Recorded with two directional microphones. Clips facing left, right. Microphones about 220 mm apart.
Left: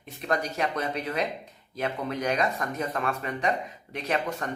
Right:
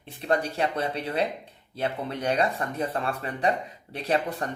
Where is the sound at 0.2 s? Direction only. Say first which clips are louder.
Right 2 dB; 30° right (ahead or behind).